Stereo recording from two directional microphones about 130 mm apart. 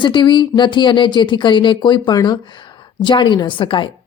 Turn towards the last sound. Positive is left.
turn(degrees=40)  # may be behind; listen again after turning